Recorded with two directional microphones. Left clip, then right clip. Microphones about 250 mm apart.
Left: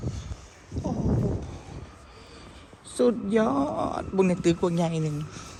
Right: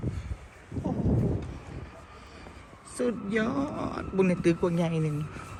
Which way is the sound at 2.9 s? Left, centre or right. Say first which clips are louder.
Left 6 dB; centre.